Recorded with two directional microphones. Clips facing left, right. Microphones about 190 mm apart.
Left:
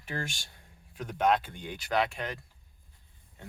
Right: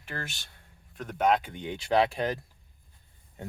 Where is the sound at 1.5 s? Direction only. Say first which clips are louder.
Right 5 dB; 25° right (ahead or behind).